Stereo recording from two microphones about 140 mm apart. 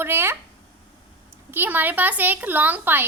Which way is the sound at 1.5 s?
15° right (ahead or behind).